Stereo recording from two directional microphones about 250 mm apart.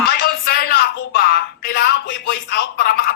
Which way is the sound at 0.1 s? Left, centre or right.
Left.